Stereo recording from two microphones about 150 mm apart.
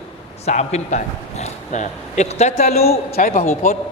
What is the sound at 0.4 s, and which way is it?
A man's voice, 50° left (ahead or behind).